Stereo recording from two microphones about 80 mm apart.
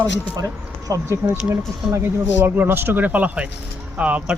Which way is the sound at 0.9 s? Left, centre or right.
Right.